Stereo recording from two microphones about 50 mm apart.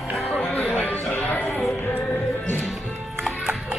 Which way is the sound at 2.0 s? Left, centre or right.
Left.